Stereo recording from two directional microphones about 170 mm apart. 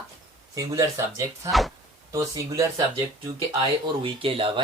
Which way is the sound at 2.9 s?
30° right (ahead or behind).